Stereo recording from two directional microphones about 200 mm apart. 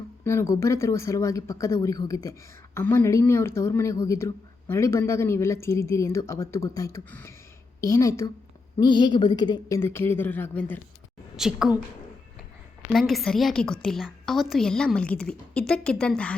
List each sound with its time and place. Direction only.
0.3 s speech: 15° left (ahead or behind)
11.3 s a woman's voice: 5° right (ahead or behind)
12.9 s a woman's voice: centre (ahead or behind)